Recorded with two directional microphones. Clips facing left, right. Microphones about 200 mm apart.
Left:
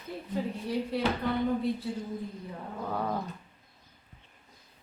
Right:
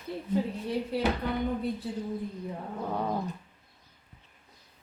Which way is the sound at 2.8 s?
15° right (ahead or behind).